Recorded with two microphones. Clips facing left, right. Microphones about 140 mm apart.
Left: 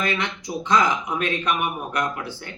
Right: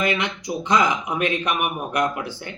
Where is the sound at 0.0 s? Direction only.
15° right (ahead or behind).